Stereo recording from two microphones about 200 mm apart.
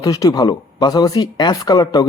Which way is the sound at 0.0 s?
20° left (ahead or behind).